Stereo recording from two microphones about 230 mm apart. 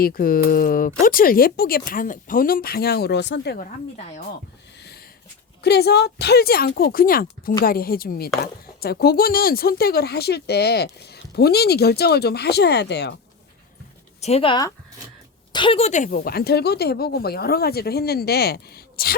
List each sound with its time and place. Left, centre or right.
0.0 s speech: left
5.6 s speech: left
14.2 s speech: left